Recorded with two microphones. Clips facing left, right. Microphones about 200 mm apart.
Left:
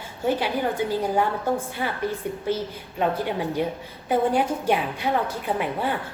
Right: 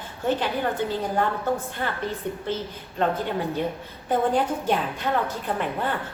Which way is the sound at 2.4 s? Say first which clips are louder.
Left 3 dB; 10° left (ahead or behind).